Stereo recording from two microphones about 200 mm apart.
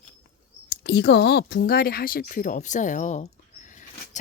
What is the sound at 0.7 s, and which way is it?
Speech, 55° left (ahead or behind).